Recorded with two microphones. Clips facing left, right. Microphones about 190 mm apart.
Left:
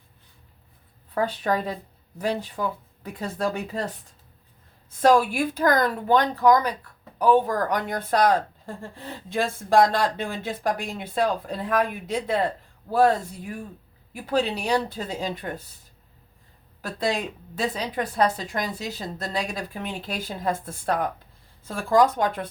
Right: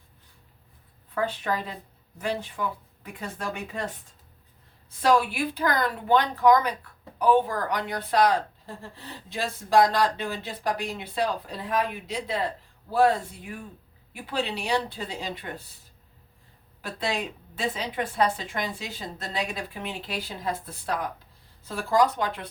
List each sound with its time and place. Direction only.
1.1 s a woman's voice: 35° left (ahead or behind)
16.8 s a woman's voice: 40° left (ahead or behind)